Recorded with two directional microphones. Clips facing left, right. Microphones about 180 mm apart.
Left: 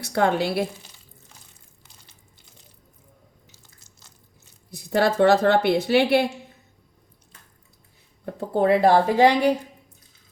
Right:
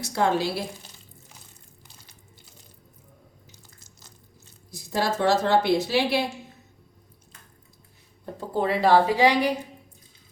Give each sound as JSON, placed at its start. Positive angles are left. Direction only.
{"t": 0.0, "sound": "speech", "side_deg": 60}
{"t": 4.7, "sound": "speech", "side_deg": 60}
{"t": 8.2, "sound": "speech", "side_deg": 55}